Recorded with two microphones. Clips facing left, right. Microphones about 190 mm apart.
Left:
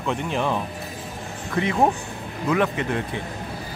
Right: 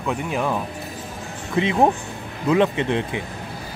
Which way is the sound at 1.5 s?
20° right (ahead or behind).